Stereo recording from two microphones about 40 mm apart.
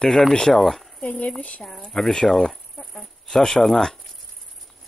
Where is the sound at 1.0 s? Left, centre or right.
Left.